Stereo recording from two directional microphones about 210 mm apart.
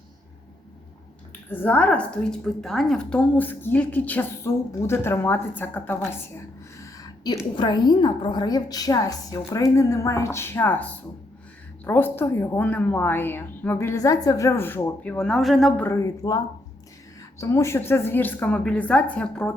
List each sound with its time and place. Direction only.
1.5 s a woman's voice: 10° left (ahead or behind)
15.9 s a woman's voice: 15° left (ahead or behind)